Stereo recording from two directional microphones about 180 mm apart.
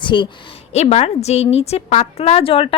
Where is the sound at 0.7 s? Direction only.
35° left (ahead or behind).